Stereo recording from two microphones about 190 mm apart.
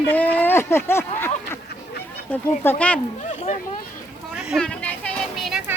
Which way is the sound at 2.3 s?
10° left (ahead or behind).